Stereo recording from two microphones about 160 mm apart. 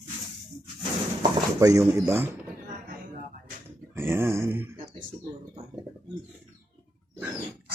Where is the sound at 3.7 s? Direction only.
15° right (ahead or behind).